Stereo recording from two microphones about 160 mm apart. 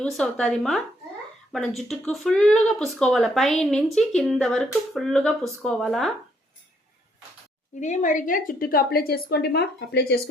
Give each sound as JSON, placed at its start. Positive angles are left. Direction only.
{"t": 0.0, "sound": "speech", "side_deg": 5}
{"t": 7.8, "sound": "a woman's voice", "side_deg": 50}